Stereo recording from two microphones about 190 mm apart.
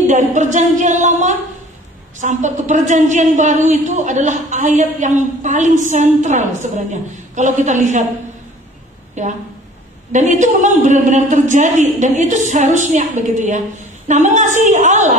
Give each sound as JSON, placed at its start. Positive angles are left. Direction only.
{"t": 0.0, "sound": "a woman's voice", "side_deg": -40}
{"t": 9.2, "sound": "a woman's voice", "side_deg": -40}